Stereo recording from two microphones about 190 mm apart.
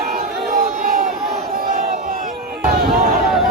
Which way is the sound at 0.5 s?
50° right (ahead or behind).